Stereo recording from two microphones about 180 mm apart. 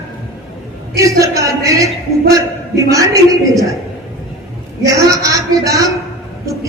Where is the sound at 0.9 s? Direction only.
15° right (ahead or behind).